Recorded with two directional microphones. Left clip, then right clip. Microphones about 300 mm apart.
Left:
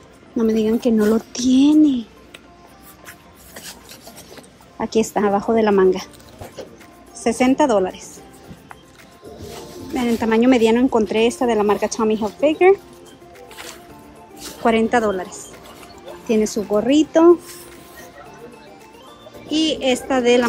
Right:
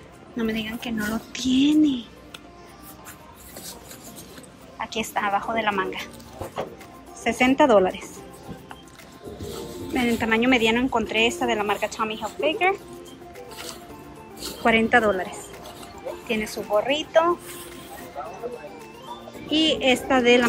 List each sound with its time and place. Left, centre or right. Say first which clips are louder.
0.4 s speech: left 10 dB; centre
4.7 s speech: left 7 dB; centre
7.2 s speech: left 2 dB; centre
9.5 s speech: left 1 dB; centre
14.4 s a woman's voice: left 3 dB; centre
16.4 s speech: left 4 dB; centre
19.5 s speech: left 1 dB; centre